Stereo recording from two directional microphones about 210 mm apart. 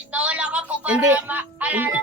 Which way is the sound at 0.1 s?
5° right (ahead or behind).